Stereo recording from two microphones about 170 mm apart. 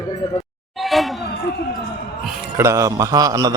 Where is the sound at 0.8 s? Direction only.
Centre (ahead or behind).